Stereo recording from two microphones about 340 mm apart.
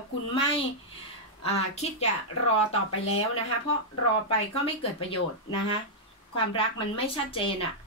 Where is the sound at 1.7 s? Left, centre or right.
Centre.